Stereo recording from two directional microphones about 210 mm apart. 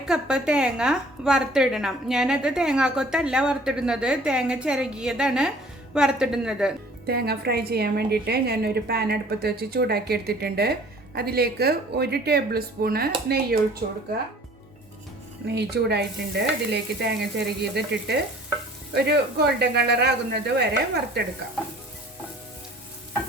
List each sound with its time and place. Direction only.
0.0 s a woman's voice: 5° right (ahead or behind)
7.1 s a woman's voice: 50° right (ahead or behind)
15.4 s a woman's voice: 50° right (ahead or behind)